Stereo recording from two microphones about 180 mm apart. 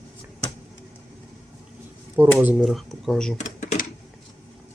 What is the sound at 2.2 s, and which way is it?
Speech, 10° right (ahead or behind).